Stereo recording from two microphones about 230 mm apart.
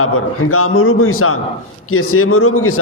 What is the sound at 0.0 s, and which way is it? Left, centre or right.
A man's voice, left.